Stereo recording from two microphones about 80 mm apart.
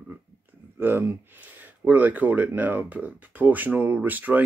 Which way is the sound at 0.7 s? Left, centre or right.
Right.